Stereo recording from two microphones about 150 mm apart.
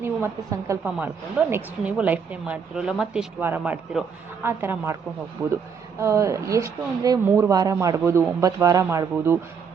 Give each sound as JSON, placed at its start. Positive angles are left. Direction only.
{"t": 0.0, "sound": "a woman's voice", "side_deg": -20}
{"t": 6.0, "sound": "speech", "side_deg": -20}